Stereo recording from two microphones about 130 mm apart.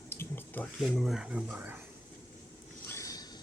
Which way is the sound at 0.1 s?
15° left (ahead or behind).